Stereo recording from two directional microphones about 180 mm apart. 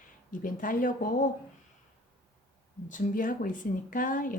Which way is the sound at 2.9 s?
45° left (ahead or behind).